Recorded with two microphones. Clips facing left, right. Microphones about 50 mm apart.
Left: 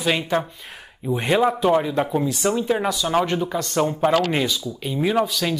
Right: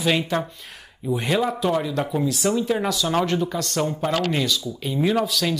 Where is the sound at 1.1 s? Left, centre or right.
Centre.